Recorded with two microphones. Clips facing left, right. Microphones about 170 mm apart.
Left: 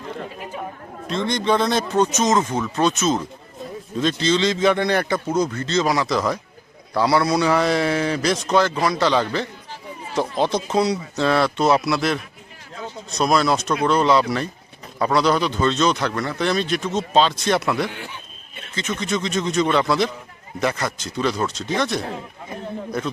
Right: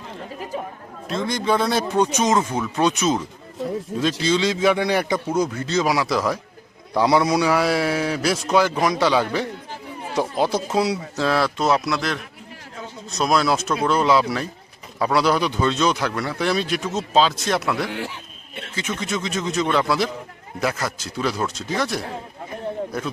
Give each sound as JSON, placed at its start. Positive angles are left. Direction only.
{"t": 1.0, "sound": "a man's voice", "side_deg": -5}
{"t": 4.2, "sound": "a man's voice", "side_deg": -10}
{"t": 6.9, "sound": "a man's voice", "side_deg": -15}
{"t": 17.9, "sound": "a sound", "side_deg": -80}
{"t": 18.7, "sound": "speech", "side_deg": -10}